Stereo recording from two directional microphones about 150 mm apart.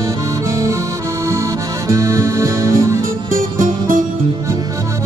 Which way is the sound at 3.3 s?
65° right (ahead or behind).